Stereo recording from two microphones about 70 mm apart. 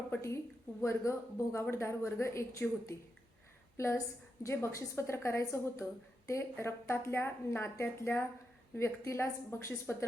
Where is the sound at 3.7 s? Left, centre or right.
Left.